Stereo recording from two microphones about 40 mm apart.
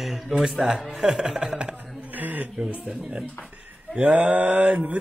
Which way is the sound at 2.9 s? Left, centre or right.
Right.